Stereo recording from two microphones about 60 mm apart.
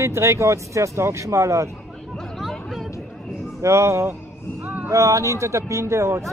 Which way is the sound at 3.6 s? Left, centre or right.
Right.